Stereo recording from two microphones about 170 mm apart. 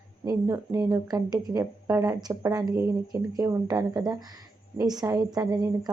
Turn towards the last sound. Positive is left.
turn(degrees=-25)  # may be behind; listen again after turning